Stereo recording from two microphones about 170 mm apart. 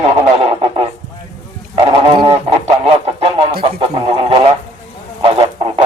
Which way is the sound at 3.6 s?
30° right (ahead or behind).